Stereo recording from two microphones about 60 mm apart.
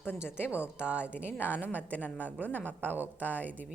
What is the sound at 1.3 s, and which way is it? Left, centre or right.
A woman's voice, left.